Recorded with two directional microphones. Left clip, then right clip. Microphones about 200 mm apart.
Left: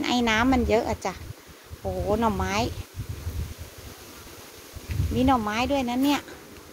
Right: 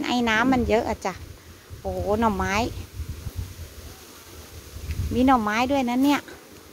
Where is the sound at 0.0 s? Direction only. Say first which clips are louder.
Right 1 dB; 5° right (ahead or behind).